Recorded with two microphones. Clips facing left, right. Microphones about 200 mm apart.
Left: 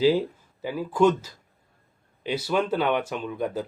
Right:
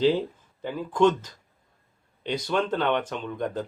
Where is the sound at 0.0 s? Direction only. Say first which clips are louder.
Left 2 dB; 10° left (ahead or behind).